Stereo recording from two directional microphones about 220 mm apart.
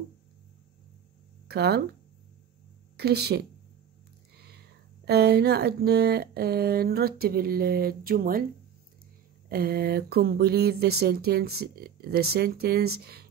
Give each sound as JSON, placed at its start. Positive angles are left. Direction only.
{"t": 1.5, "sound": "speech", "side_deg": -50}
{"t": 3.0, "sound": "speech", "side_deg": -45}
{"t": 9.5, "sound": "speech", "side_deg": -45}